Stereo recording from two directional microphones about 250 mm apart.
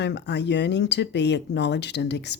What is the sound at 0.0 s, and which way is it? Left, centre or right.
Speech, left.